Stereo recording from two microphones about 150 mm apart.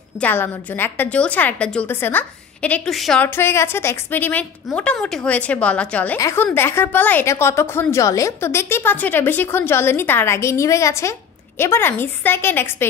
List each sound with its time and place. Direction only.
0.2 s a woman's voice: 15° left (ahead or behind)
3.3 s a woman's voice: 15° left (ahead or behind)
6.1 s a woman's voice: 20° left (ahead or behind)